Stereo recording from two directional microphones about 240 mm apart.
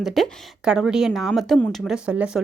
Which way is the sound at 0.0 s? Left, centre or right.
Centre.